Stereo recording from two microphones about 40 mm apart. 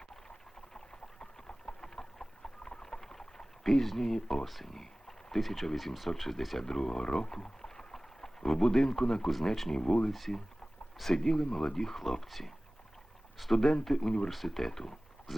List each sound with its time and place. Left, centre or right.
1.2 s a sound: centre
3.8 s speech: centre
10.1 s speech: centre
11.0 s speech: centre